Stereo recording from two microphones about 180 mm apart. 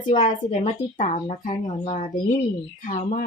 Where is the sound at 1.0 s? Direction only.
40° left (ahead or behind).